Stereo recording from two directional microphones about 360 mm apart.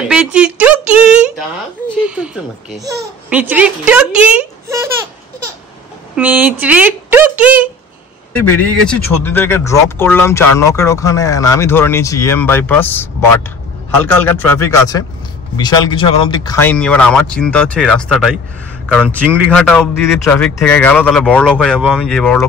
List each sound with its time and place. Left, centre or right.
0.1 s a sound: centre
2.0 s a man's voice: centre
6.1 s a man's voice: centre